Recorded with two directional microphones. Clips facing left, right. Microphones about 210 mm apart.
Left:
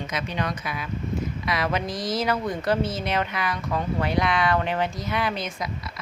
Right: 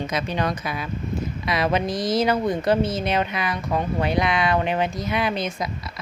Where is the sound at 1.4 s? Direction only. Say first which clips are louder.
Right 6 dB; 25° right (ahead or behind).